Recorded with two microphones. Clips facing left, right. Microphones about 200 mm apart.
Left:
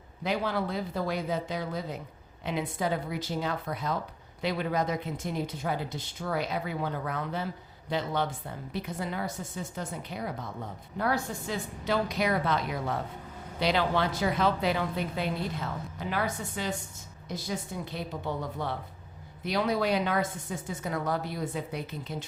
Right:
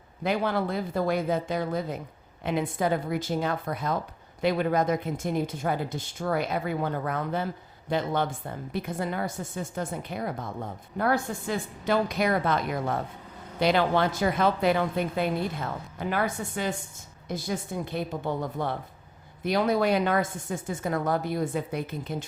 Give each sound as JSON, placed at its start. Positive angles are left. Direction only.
{"t": 0.2, "sound": "speech", "side_deg": -55}